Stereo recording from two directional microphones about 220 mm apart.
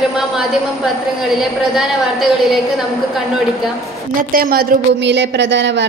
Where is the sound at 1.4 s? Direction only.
Centre (ahead or behind).